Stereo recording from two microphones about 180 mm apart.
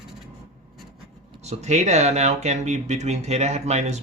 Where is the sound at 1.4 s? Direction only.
40° right (ahead or behind).